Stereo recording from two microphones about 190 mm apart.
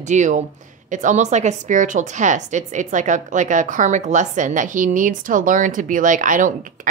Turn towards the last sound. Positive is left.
turn(degrees=-40)  # may be behind; listen again after turning